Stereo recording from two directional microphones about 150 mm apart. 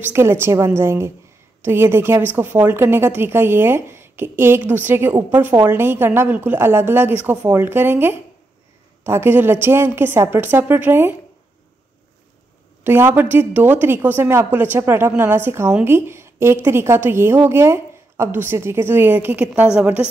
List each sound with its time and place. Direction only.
0.0 s a woman's voice: 15° right (ahead or behind)
12.8 s a woman's voice: 15° right (ahead or behind)